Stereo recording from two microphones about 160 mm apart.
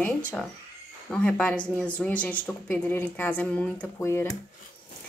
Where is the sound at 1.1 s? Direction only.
5° left (ahead or behind).